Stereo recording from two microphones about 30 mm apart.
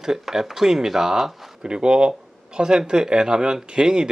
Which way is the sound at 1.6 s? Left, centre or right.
Right.